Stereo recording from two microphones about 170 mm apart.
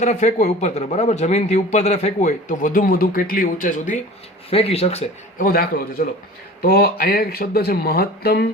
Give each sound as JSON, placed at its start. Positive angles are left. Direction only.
{"t": 0.0, "sound": "a man's voice", "side_deg": 40}
{"t": 4.4, "sound": "speech", "side_deg": 35}
{"t": 5.4, "sound": "speech", "side_deg": 60}